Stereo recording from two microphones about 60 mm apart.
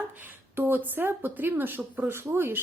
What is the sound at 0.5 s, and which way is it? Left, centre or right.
A woman's voice, right.